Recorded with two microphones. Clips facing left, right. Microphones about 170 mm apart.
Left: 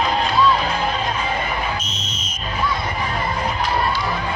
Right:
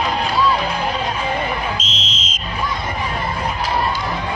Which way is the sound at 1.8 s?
90° right.